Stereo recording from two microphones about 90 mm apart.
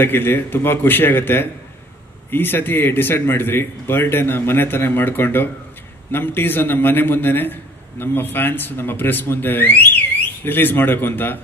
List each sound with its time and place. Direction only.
0.0 s a man's voice: 25° left (ahead or behind)